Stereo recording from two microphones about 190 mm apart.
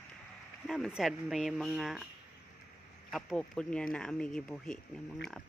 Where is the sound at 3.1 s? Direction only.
5° left (ahead or behind).